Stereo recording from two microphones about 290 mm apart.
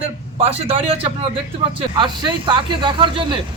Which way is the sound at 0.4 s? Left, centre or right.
Right.